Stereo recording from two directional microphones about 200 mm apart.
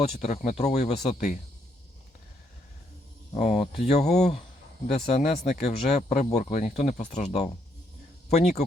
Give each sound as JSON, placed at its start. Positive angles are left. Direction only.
{"t": 0.0, "sound": "speech", "side_deg": 30}
{"t": 3.3, "sound": "speech", "side_deg": 30}